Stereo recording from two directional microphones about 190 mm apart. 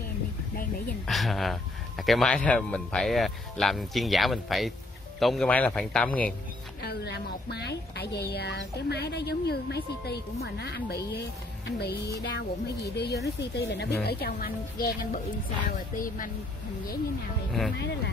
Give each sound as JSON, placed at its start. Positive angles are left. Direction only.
{"t": 1.0, "sound": "speech", "side_deg": 0}
{"t": 6.8, "sound": "a woman's voice", "side_deg": 60}
{"t": 17.7, "sound": "a woman's voice", "side_deg": 60}